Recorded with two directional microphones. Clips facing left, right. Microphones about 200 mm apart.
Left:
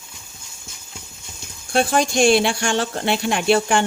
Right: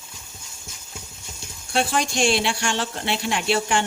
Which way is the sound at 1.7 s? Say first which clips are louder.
Left 5 dB; 50° left (ahead or behind).